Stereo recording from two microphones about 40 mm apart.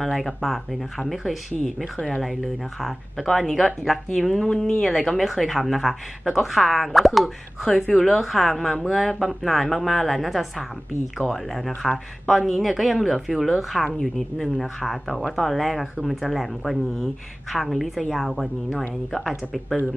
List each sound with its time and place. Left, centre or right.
0.0 s speech: centre
4.8 s speech: centre
14.0 s speech: centre